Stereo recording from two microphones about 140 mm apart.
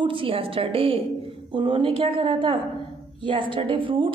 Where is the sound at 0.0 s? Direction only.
40° right (ahead or behind).